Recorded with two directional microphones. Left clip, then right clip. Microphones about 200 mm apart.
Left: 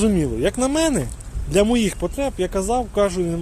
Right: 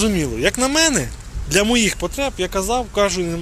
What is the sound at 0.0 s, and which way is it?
Speech, 20° left (ahead or behind).